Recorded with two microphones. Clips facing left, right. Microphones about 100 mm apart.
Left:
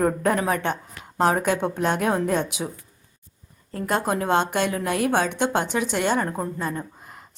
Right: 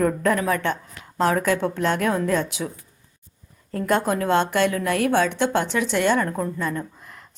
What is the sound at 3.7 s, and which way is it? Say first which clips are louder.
Speech: right 3 dB; 5° left (ahead or behind).